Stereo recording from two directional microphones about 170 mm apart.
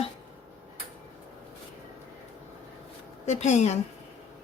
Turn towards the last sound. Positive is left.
turn(degrees=40)  # may be behind; listen again after turning